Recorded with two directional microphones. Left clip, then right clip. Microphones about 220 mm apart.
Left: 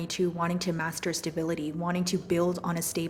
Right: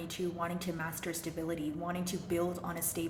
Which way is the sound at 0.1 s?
45° left (ahead or behind).